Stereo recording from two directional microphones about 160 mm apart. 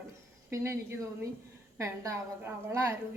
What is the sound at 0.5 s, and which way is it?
A woman's voice, 15° right (ahead or behind).